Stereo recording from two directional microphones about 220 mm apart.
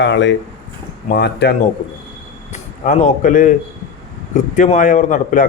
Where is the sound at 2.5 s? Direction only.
35° left (ahead or behind).